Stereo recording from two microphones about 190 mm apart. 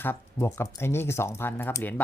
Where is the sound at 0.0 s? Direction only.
10° left (ahead or behind).